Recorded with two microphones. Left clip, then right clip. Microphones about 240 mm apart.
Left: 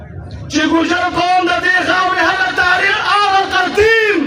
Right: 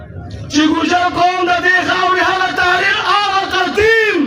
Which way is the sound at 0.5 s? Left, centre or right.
Right.